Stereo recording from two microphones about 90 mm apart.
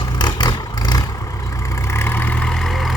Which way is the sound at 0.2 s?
50° left (ahead or behind).